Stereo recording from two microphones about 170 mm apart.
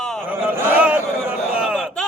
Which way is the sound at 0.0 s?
5° left (ahead or behind).